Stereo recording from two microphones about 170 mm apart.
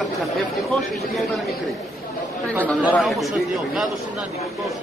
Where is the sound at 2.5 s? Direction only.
10° left (ahead or behind).